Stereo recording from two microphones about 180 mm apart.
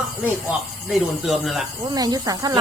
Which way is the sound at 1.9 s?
20° right (ahead or behind).